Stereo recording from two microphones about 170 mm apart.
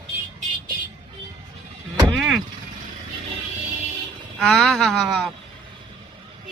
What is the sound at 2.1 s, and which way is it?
Speech, centre (ahead or behind).